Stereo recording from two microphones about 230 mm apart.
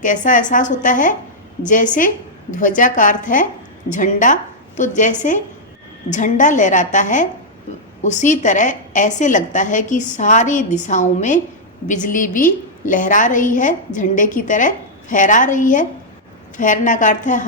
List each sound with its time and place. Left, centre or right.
0.0 s a woman's voice: left